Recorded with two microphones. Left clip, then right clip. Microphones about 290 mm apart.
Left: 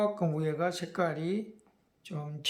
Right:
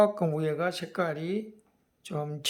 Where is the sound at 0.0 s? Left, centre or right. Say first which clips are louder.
Right 6 dB; centre.